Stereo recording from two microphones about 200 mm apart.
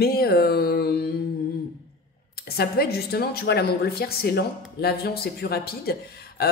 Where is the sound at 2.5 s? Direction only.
50° left (ahead or behind).